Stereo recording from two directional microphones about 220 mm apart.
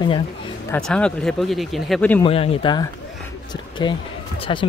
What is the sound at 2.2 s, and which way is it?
Speech, 25° left (ahead or behind).